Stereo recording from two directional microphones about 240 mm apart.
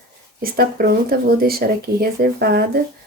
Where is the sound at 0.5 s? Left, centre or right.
Right.